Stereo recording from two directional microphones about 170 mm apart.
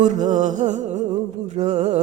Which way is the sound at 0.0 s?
45° right (ahead or behind).